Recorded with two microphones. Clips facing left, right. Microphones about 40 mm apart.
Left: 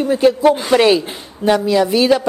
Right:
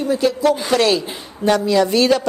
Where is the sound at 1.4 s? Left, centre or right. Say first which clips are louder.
Left 1 dB; centre.